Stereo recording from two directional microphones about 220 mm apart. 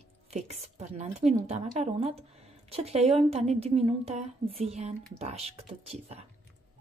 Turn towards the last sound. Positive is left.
turn(degrees=-30)  # may be behind; listen again after turning